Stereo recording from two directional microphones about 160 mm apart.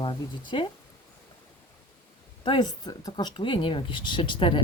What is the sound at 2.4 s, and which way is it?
Speech, 30° left (ahead or behind).